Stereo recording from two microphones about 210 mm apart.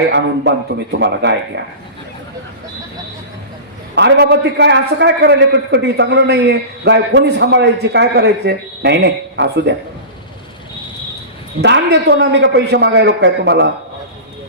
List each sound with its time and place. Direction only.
0.1 s a man's voice: 55° right (ahead or behind)
3.9 s a man's voice: 55° right (ahead or behind)
11.6 s a man's voice: 55° right (ahead or behind)